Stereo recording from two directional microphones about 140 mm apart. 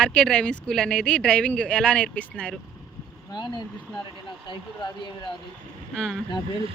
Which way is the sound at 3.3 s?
30° left (ahead or behind).